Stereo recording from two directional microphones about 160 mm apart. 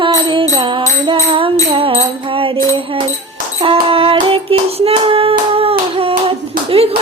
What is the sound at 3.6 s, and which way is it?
Hands, 35° right (ahead or behind).